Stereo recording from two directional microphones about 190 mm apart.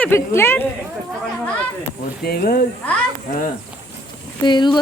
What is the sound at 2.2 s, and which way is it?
Speech, 50° left (ahead or behind).